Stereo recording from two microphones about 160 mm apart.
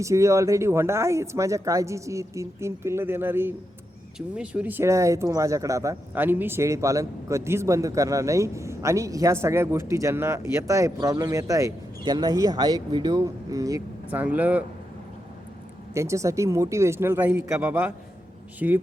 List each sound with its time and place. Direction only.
0.0 s speech: 20° right (ahead or behind)
14.1 s speech: 10° right (ahead or behind)
16.0 s speech: 20° right (ahead or behind)